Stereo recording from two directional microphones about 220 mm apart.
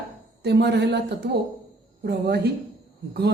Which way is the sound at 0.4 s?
50° right (ahead or behind).